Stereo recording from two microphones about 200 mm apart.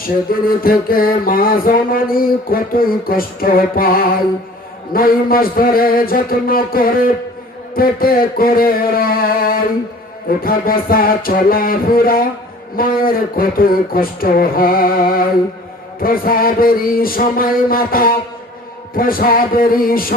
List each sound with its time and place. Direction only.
0.3 s music: 45° left (ahead or behind)